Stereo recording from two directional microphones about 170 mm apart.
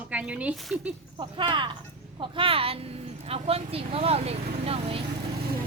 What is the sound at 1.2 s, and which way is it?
Speech, 30° right (ahead or behind).